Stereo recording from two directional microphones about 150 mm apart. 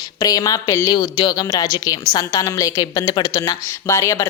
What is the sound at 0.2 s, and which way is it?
Speech, 25° left (ahead or behind).